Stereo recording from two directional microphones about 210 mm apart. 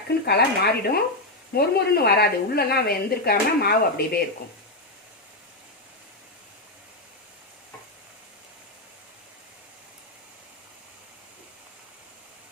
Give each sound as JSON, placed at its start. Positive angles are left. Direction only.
{"t": 0.3, "sound": "a woman's voice", "side_deg": 50}